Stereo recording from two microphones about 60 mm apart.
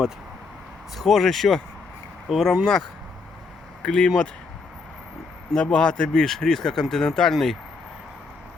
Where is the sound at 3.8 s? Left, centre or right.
Centre.